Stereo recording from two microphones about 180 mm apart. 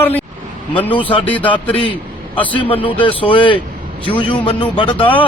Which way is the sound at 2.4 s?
25° left (ahead or behind).